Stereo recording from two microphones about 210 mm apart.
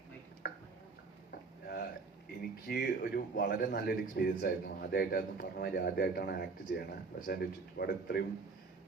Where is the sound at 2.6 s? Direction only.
45° left (ahead or behind).